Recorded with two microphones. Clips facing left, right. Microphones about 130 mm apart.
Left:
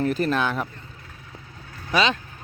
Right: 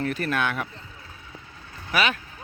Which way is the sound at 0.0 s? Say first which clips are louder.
Left 3 dB; 30° left (ahead or behind).